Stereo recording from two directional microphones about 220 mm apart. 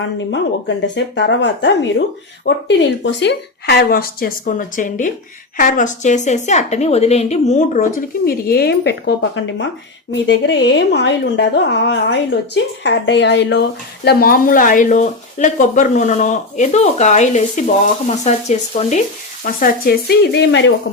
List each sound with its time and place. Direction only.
0.9 s speech: 55° left (ahead or behind)